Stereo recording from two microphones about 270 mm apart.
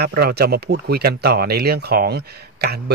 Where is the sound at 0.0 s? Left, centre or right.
Right.